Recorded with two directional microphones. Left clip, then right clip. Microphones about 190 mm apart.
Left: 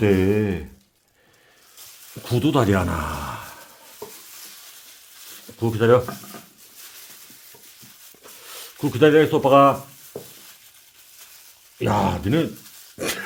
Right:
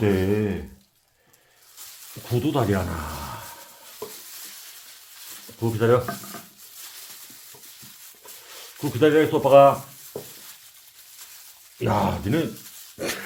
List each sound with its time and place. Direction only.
0.0 s speech: 55° left (ahead or behind)
2.2 s speech: 50° left (ahead or behind)
4.0 s stir: centre (ahead or behind)
5.5 s speech: 45° left (ahead or behind)
8.4 s speech: 50° left (ahead or behind)
10.1 s stir: 5° right (ahead or behind)
11.8 s speech: 45° left (ahead or behind)
13.0 s a sound: 40° left (ahead or behind)